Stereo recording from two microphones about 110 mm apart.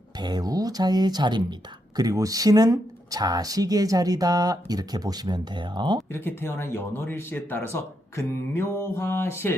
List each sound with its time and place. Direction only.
0.2 s speech: 40° right (ahead or behind)
6.1 s speech: 20° left (ahead or behind)